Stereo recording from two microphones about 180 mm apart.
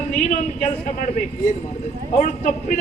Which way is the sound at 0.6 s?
45° left (ahead or behind).